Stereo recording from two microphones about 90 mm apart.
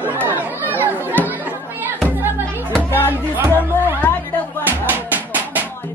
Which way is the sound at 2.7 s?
20° left (ahead or behind).